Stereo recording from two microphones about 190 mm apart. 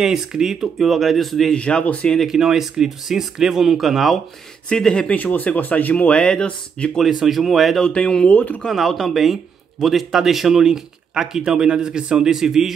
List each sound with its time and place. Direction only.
0.0 s speech: centre (ahead or behind)